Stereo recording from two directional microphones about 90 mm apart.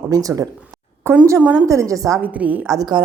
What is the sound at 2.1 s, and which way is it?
Speech, 15° right (ahead or behind).